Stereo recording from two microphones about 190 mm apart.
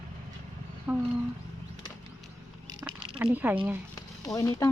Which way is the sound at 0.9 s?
5° right (ahead or behind).